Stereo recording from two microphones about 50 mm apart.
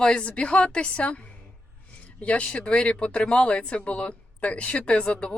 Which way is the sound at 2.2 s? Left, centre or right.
Left.